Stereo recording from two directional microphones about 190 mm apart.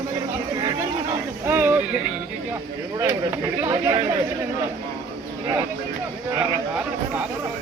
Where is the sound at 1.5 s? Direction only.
10° right (ahead or behind).